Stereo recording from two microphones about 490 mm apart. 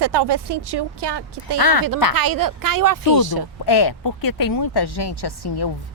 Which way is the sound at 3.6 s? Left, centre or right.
Left.